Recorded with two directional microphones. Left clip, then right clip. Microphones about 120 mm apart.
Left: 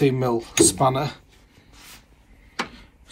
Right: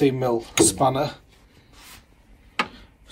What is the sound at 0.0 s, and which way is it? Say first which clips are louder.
Speech: even; 20° right (ahead or behind).